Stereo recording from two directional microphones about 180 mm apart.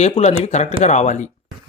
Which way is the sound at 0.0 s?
35° left (ahead or behind).